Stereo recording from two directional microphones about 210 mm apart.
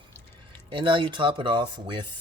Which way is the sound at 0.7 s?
25° right (ahead or behind).